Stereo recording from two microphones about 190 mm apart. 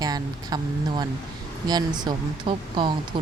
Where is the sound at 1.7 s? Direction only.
20° right (ahead or behind).